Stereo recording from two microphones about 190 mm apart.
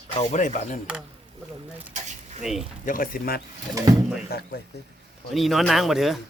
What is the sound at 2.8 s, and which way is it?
Speech, 45° left (ahead or behind).